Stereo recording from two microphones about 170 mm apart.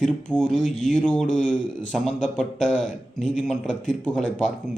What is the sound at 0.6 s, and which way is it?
Speech, 45° left (ahead or behind).